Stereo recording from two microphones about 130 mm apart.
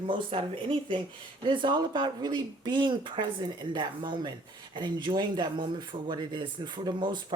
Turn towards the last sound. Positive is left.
turn(degrees=-35)  # may be behind; listen again after turning